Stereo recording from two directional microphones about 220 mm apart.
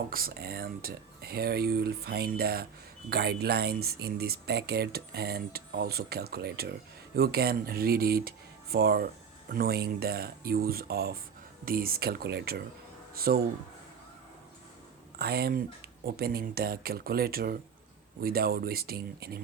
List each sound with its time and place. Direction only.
0.1 s speech: 40° right (ahead or behind)
15.2 s speech: 45° right (ahead or behind)